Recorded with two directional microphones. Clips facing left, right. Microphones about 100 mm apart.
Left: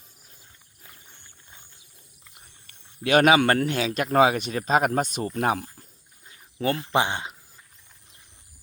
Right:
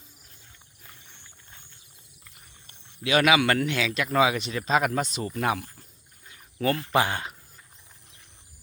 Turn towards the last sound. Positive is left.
turn(degrees=20)  # may be behind; listen again after turning